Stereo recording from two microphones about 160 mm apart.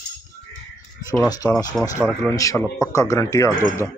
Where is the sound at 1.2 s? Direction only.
25° left (ahead or behind).